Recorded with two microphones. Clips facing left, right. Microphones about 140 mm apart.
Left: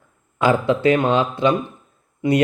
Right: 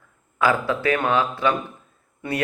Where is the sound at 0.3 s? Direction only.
25° left (ahead or behind).